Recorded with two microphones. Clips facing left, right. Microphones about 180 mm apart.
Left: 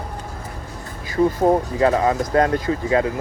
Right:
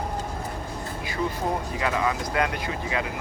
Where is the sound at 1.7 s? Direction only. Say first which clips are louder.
Left 8 dB; 35° left (ahead or behind).